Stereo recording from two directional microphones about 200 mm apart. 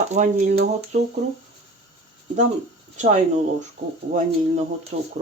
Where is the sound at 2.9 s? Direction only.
35° right (ahead or behind).